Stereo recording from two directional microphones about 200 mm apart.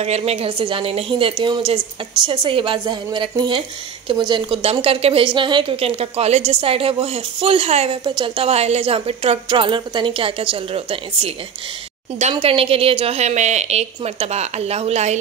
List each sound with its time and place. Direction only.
0.0 s a woman's voice: 30° right (ahead or behind)